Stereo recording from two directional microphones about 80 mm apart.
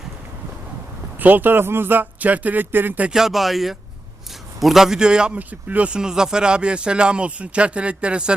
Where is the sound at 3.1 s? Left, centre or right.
Centre.